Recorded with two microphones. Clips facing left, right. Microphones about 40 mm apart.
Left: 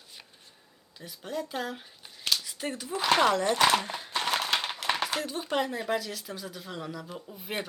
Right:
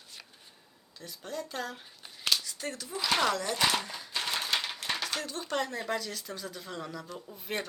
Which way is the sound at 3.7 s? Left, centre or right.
Left.